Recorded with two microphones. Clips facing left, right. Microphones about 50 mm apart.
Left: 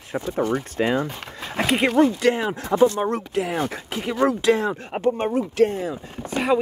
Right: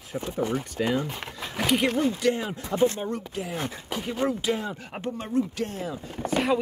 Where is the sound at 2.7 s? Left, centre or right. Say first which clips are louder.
Left 6 dB; left.